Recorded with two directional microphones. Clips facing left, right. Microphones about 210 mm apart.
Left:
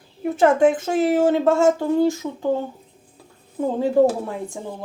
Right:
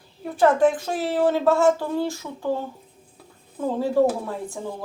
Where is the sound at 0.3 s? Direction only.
25° left (ahead or behind).